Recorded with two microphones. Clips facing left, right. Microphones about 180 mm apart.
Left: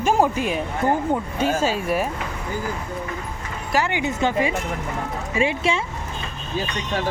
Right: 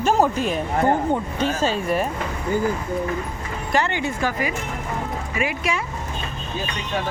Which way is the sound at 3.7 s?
10° left (ahead or behind).